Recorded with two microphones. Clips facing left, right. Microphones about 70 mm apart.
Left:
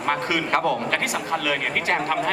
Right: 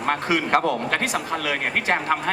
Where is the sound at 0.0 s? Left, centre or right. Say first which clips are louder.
Right 1 dB; right.